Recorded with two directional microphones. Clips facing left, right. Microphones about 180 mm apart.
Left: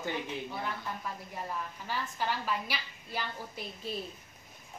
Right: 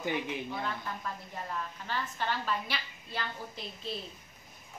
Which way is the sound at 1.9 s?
10° left (ahead or behind).